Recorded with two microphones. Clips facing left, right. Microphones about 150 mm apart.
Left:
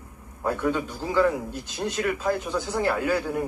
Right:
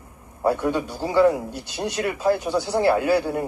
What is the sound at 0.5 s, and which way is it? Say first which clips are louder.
Speech: right 2 dB; 15° right (ahead or behind).